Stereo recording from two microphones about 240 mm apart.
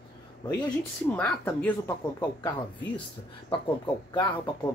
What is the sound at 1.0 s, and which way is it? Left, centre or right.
Speech, centre.